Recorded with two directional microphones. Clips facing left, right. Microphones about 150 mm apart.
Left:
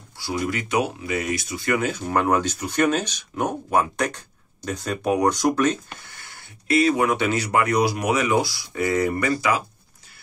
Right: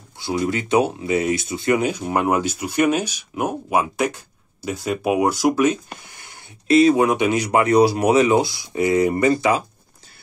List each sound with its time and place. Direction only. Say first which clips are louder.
0.2 s speech: right 4 dB; 25° right (ahead or behind)
7.6 s speech: right 6 dB; 30° right (ahead or behind)